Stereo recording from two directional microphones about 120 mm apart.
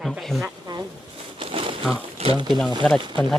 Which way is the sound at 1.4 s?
50° right (ahead or behind).